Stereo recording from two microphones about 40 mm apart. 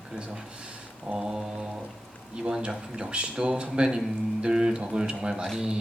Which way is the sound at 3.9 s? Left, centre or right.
Centre.